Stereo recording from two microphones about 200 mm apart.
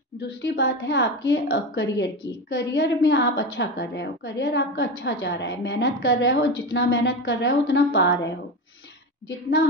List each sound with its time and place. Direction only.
0.4 s a woman's voice: 60° left (ahead or behind)